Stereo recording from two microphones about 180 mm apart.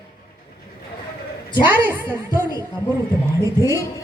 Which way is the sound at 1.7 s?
10° right (ahead or behind).